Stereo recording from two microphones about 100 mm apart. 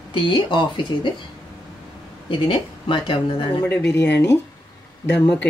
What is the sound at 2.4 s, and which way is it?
Speech, 55° left (ahead or behind).